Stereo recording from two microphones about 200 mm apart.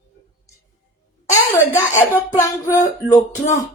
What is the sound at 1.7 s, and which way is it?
Speech, 15° left (ahead or behind).